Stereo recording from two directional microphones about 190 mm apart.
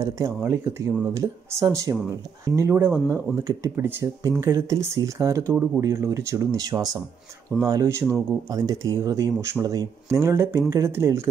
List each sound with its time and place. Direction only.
0.0 s speech: 15° right (ahead or behind)